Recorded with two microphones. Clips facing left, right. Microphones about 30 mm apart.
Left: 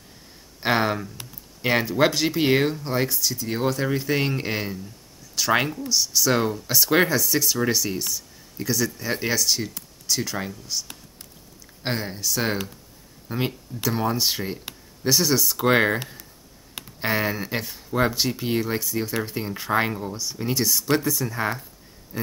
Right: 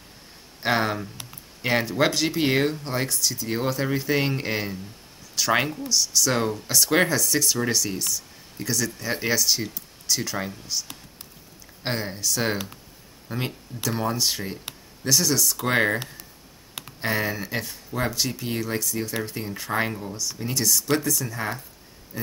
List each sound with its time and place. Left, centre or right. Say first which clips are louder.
0.6 s speech: left 1 dB; centre
16.0 s speech: left 1 dB; centre
17.0 s speech: left 2 dB; centre
22.1 s a sound: left 3 dB; left